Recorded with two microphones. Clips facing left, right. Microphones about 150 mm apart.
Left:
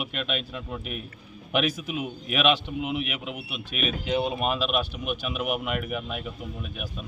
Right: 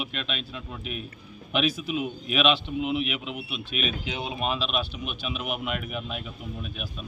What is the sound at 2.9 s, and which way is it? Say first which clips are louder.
Speech: right 2 dB; 45° left (ahead or behind).